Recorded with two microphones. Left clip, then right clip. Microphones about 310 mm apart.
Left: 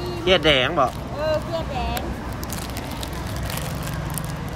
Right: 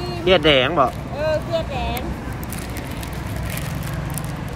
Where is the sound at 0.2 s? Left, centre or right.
Centre.